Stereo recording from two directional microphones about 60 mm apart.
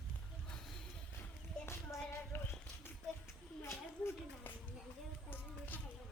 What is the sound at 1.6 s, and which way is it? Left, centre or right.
Music, left.